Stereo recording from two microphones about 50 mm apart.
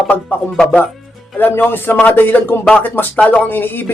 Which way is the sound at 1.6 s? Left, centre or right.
Left.